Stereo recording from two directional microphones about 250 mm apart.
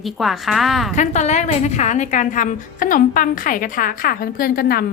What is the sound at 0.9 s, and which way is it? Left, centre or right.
A woman's voice, left.